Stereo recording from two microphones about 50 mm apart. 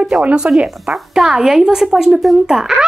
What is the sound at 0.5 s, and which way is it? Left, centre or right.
A woman's voice, centre.